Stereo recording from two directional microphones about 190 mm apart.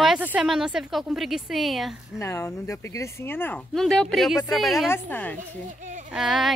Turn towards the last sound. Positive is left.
turn(degrees=-5)  # may be behind; listen again after turning